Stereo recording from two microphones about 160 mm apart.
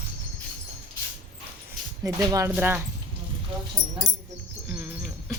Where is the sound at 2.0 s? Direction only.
20° right (ahead or behind).